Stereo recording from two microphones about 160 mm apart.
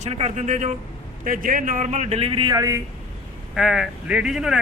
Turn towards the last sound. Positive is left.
turn(degrees=-5)  # may be behind; listen again after turning